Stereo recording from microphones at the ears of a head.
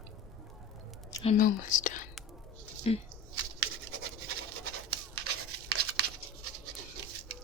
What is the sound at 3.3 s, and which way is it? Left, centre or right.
Scratch, right.